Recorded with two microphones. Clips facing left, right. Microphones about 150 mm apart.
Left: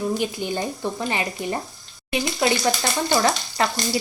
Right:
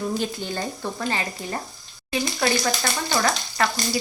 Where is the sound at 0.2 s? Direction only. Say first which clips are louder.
Left 2 dB; 15° left (ahead or behind).